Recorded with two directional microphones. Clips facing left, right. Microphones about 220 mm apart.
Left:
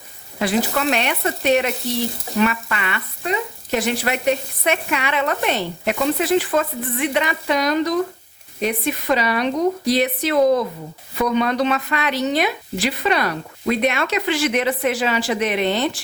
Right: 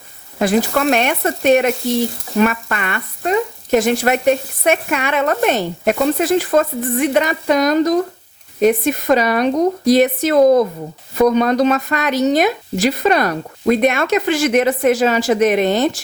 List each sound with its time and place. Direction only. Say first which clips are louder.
0.3 s speech: right 5 dB; 50° right (ahead or behind)